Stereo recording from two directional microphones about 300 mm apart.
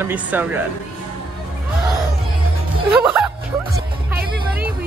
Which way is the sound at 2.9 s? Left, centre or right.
Centre.